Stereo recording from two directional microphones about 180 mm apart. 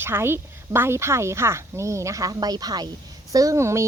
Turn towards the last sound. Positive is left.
turn(degrees=-15)  # may be behind; listen again after turning